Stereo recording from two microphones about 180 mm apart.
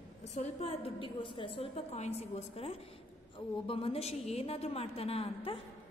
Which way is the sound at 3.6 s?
30° left (ahead or behind).